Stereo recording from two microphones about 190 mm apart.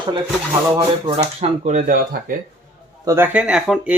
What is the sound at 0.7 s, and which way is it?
Speech, 20° right (ahead or behind).